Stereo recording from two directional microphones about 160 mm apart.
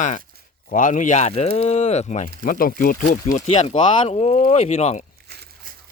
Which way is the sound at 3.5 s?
35° left (ahead or behind).